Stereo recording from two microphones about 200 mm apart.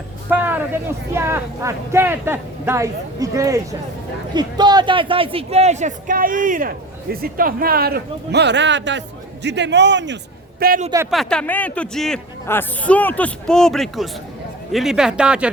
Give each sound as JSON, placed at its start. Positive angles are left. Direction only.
{"t": 0.3, "sound": "a sound", "side_deg": -10}
{"t": 1.2, "sound": "a man's voice", "side_deg": -15}
{"t": 10.6, "sound": "a man's voice", "side_deg": -45}
{"t": 11.1, "sound": "a man's voice", "side_deg": 0}